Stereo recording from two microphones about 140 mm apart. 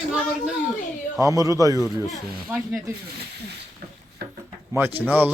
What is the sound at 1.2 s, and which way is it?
Speech, 25° right (ahead or behind).